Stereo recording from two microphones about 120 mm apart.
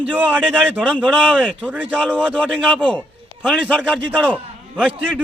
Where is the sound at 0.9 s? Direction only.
5° left (ahead or behind).